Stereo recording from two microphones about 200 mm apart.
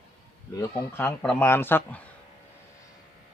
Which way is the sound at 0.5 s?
15° left (ahead or behind).